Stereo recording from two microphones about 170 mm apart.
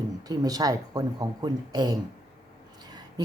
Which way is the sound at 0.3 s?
20° right (ahead or behind).